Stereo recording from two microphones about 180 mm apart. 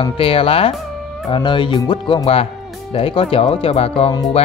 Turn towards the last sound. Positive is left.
turn(degrees=30)  # may be behind; listen again after turning